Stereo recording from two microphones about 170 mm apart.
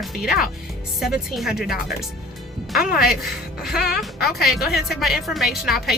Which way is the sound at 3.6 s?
Centre (ahead or behind).